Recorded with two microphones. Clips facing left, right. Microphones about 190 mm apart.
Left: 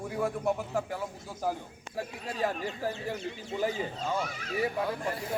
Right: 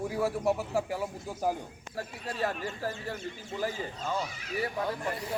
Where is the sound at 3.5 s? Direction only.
20° left (ahead or behind).